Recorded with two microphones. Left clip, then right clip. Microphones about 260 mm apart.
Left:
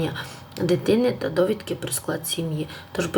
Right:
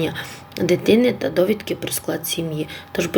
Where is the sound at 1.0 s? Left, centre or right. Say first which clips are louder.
Right 3 dB; centre.